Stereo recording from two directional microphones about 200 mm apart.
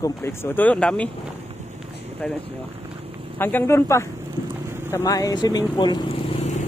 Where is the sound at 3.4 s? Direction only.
10° left (ahead or behind).